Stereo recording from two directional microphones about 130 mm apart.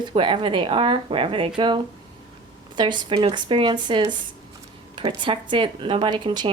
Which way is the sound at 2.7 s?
35° right (ahead or behind).